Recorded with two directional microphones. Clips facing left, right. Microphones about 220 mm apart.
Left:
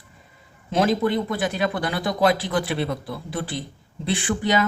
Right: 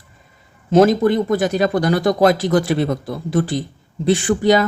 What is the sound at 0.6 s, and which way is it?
A man's voice, 45° right (ahead or behind).